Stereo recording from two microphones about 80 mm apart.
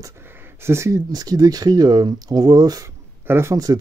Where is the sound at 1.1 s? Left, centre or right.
Right.